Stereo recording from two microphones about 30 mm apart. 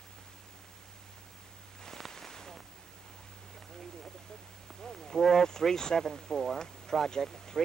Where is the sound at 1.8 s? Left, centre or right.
Centre.